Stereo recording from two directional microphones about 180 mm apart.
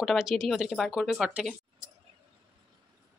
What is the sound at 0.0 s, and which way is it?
Speech, centre (ahead or behind).